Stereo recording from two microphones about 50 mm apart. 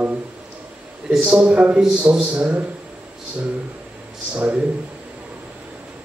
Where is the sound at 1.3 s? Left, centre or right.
Right.